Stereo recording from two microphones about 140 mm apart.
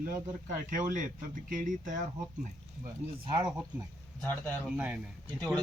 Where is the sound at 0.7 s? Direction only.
70° right (ahead or behind).